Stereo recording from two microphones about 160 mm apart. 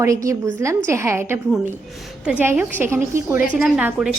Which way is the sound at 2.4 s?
15° right (ahead or behind).